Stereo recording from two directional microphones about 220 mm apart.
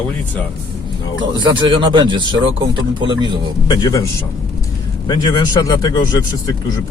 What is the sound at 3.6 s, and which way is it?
Speech, 15° left (ahead or behind).